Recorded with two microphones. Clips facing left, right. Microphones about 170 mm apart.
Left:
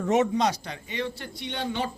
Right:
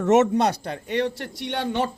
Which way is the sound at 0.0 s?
70° right (ahead or behind).